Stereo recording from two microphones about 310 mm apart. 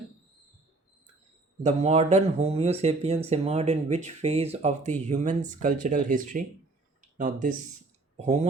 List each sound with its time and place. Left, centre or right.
1.6 s speech: right